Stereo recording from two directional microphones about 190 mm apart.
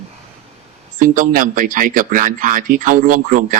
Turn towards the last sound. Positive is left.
turn(degrees=-45)  # may be behind; listen again after turning